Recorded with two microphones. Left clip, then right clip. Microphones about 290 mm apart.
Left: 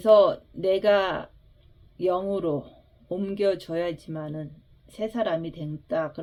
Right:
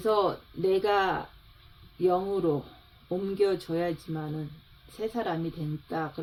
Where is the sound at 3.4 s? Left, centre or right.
Left.